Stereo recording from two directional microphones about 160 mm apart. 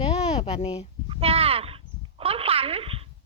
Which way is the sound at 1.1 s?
35° right (ahead or behind).